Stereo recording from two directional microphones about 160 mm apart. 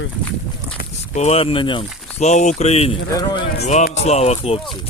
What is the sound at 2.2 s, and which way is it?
Speech, 45° left (ahead or behind).